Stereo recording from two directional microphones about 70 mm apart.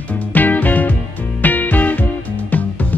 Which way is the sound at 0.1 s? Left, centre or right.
Left.